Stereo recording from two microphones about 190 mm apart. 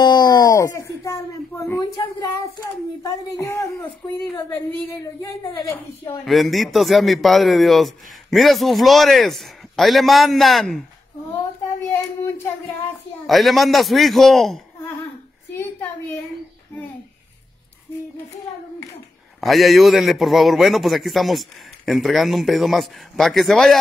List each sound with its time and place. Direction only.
0.0 s a sound: 20° left (ahead or behind)
3.0 s a woman's voice: 15° left (ahead or behind)
6.2 s a man's voice: centre (ahead or behind)
11.9 s child singing: 15° left (ahead or behind)
13.3 s a man's voice: centre (ahead or behind)
15.5 s a woman's voice: 15° left (ahead or behind)
19.4 s a man's voice: centre (ahead or behind)